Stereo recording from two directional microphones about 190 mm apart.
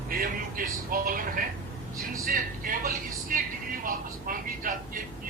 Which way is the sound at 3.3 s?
45° right (ahead or behind).